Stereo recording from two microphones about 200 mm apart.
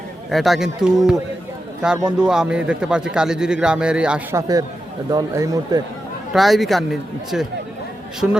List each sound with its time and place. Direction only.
0.3 s speech: centre (ahead or behind)
4.4 s speech: 15° right (ahead or behind)
6.3 s speech: centre (ahead or behind)